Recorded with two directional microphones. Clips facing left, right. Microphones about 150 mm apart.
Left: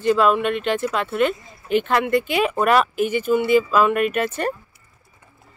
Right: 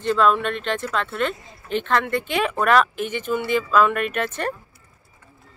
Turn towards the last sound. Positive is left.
turn(degrees=5)  # may be behind; listen again after turning